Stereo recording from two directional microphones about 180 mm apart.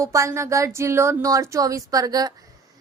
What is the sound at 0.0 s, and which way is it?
A woman's voice, 15° right (ahead or behind).